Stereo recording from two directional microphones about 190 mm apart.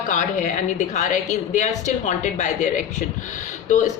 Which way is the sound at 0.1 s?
40° left (ahead or behind).